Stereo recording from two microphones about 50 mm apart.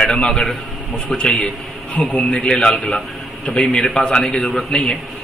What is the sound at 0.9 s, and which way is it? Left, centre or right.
A man's voice, left.